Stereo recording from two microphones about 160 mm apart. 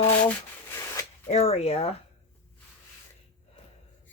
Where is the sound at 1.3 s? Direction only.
40° left (ahead or behind).